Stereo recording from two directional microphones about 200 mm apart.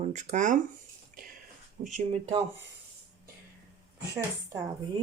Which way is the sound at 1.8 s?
40° right (ahead or behind).